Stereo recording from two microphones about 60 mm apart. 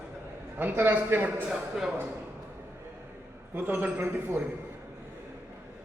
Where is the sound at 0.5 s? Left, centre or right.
Right.